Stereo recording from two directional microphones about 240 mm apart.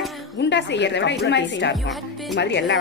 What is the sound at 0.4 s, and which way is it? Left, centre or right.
A woman's voice, left.